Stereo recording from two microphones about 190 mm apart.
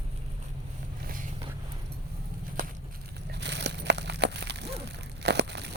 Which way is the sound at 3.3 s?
65° right (ahead or behind).